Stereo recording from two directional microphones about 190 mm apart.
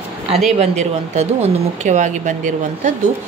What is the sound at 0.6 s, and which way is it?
A woman's voice, 35° right (ahead or behind).